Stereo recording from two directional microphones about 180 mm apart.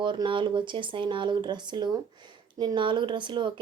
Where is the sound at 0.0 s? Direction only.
25° right (ahead or behind).